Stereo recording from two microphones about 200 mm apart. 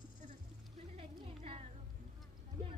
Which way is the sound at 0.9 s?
30° right (ahead or behind).